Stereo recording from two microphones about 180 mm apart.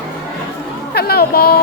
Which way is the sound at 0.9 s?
60° left (ahead or behind).